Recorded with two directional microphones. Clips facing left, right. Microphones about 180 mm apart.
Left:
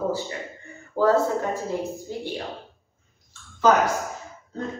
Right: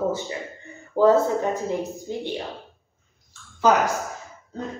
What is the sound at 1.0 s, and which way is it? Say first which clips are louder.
Speech: right 3 dB; 20° right (ahead or behind).